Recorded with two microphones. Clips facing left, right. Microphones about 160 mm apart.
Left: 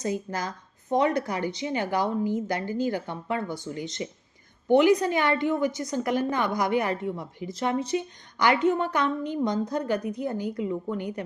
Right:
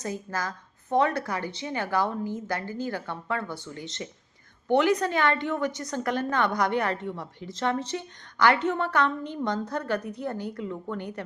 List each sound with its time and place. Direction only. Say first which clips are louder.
0.0 s a woman's voice: left 3 dB; 15° left (ahead or behind)